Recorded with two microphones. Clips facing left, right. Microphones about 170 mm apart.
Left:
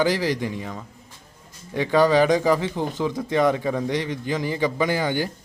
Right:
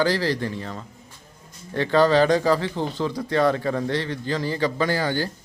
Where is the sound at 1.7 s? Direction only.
15° left (ahead or behind).